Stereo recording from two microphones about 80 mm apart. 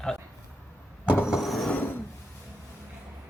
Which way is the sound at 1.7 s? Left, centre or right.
Left.